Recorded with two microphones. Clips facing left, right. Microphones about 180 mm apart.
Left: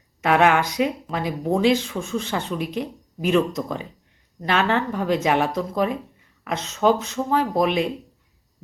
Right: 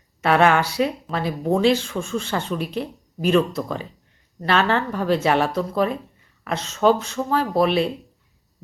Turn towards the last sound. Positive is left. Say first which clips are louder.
# right 1 dB
turn(degrees=15)  # may be behind; listen again after turning